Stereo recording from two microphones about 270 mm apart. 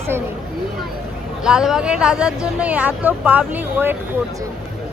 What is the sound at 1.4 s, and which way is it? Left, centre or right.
Speech, centre.